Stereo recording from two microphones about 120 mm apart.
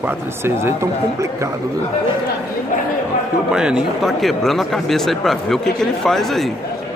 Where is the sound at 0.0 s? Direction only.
20° right (ahead or behind).